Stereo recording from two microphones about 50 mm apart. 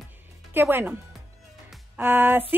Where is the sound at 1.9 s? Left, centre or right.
Right.